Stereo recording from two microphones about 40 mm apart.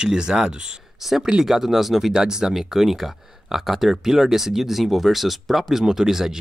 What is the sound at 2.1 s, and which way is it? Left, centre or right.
Speech, centre.